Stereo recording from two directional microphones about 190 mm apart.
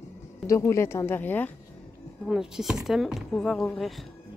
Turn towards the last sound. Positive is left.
turn(degrees=0)  # may be behind; listen again after turning